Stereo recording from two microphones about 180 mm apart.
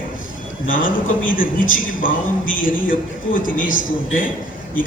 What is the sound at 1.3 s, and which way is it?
A man's voice, 50° left (ahead or behind).